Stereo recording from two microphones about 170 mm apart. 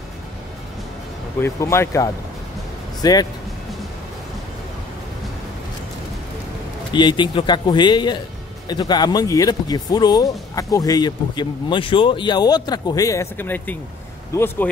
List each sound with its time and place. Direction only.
1.4 s speech: 15° left (ahead or behind)
6.9 s speech: 25° left (ahead or behind)